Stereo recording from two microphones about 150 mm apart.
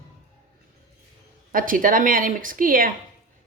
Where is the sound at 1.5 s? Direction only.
65° right (ahead or behind).